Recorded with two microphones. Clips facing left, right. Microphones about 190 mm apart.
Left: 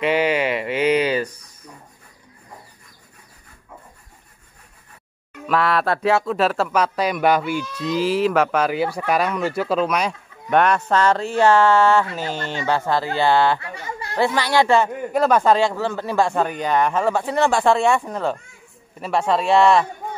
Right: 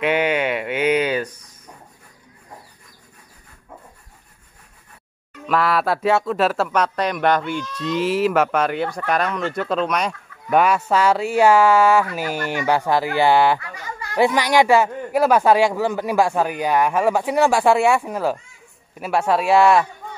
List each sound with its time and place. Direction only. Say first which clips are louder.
0.0 s speech: even; centre (ahead or behind)
5.5 s speech: even; centre (ahead or behind)
13.6 s speech: left 2 dB; 25° left (ahead or behind)
14.1 s speech: right 2 dB; 15° right (ahead or behind)